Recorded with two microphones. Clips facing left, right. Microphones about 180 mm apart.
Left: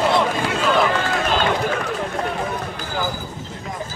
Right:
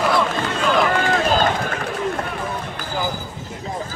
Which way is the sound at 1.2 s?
40° right (ahead or behind).